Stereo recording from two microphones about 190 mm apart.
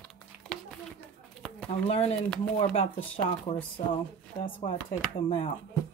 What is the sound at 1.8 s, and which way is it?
Speech, 30° left (ahead or behind).